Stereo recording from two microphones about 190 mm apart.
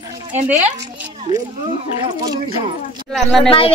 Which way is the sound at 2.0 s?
20° right (ahead or behind).